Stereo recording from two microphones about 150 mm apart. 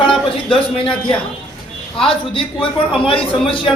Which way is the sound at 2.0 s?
35° left (ahead or behind).